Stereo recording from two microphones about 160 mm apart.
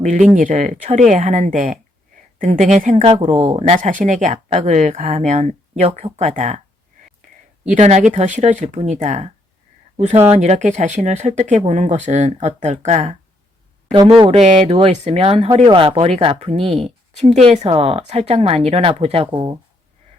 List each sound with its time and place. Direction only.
0.0 s speech: 50° right (ahead or behind)
2.9 s speech: 40° right (ahead or behind)
3.6 s speech: 50° right (ahead or behind)
7.8 s speech: 45° right (ahead or behind)
13.9 s speech: 30° right (ahead or behind)